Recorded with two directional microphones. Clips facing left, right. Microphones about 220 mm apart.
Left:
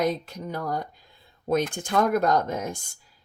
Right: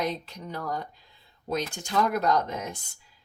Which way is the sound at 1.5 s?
55° left (ahead or behind).